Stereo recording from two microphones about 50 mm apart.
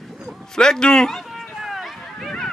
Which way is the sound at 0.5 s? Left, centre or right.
Centre.